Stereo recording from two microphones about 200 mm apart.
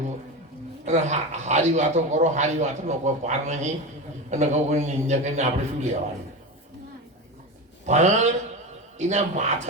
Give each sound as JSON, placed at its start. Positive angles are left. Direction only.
{"t": 0.9, "sound": "a man's voice", "side_deg": -35}
{"t": 7.9, "sound": "a man's voice", "side_deg": -35}